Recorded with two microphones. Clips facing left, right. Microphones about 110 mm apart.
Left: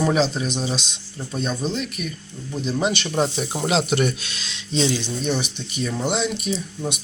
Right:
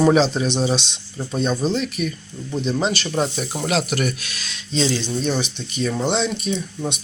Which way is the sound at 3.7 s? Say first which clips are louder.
Left 1 dB; 25° left (ahead or behind).